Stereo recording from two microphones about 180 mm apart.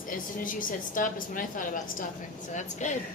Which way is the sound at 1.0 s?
50° left (ahead or behind).